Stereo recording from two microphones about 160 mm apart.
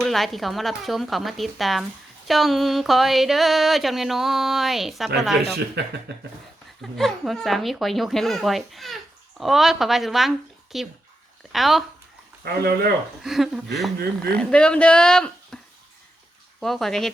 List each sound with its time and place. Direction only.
0.0 s speech: centre (ahead or behind)
5.8 s speech: 90° right
6.9 s speech: centre (ahead or behind)
12.5 s speech: 75° right (ahead or behind)
13.2 s speech: centre (ahead or behind)
15.5 s a sound: 5° left (ahead or behind)
16.6 s speech: centre (ahead or behind)